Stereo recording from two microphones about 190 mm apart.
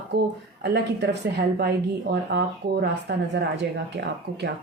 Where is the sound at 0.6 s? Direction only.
65° right (ahead or behind).